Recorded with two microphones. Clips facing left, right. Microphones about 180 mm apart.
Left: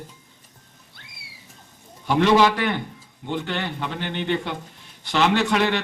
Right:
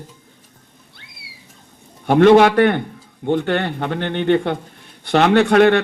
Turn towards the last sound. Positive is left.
turn(degrees=-60)  # may be behind; listen again after turning